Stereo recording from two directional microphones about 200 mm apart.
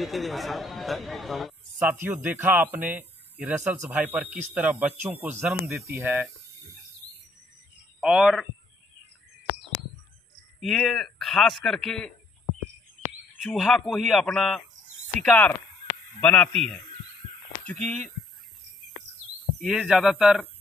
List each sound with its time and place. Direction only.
0.0 s a man's voice: centre (ahead or behind)
8.0 s a man's voice: 5° right (ahead or behind)
10.6 s a man's voice: centre (ahead or behind)
13.4 s a man's voice: centre (ahead or behind)
17.6 s a man's voice: 5° left (ahead or behind)
19.6 s a man's voice: centre (ahead or behind)